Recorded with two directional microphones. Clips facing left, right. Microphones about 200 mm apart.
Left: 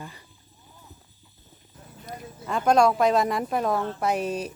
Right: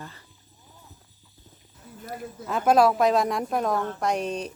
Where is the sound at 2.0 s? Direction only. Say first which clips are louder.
Right 1 dB; 5° right (ahead or behind).